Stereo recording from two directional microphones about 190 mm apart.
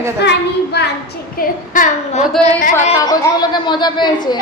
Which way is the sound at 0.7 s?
60° left (ahead or behind).